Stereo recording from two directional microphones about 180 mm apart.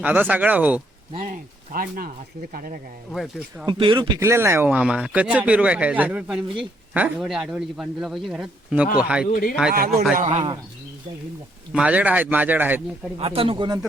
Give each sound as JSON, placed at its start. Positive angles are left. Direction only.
{"t": 0.0, "sound": "speech", "side_deg": -10}
{"t": 1.2, "sound": "speech", "side_deg": -50}
{"t": 3.1, "sound": "speech", "side_deg": 0}
{"t": 3.7, "sound": "speech", "side_deg": -30}
{"t": 4.2, "sound": "speech", "side_deg": -15}
{"t": 9.2, "sound": "speech", "side_deg": 55}
{"t": 9.7, "sound": "a man's voice", "side_deg": -55}
{"t": 10.2, "sound": "speech", "side_deg": -40}
{"t": 11.7, "sound": "speech", "side_deg": -5}
{"t": 13.1, "sound": "speech", "side_deg": -30}